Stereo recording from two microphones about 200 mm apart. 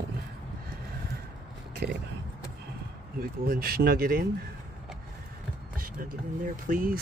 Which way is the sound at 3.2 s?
45° right (ahead or behind).